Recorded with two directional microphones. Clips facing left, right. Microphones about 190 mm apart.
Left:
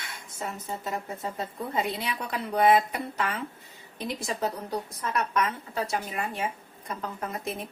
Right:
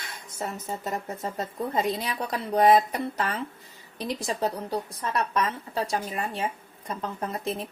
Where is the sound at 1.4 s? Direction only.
40° right (ahead or behind).